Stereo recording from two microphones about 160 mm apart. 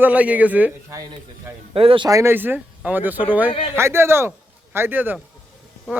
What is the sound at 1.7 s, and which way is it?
Speech, 35° right (ahead or behind).